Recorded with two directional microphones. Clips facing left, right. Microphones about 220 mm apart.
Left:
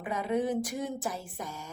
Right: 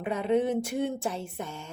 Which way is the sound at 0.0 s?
25° right (ahead or behind).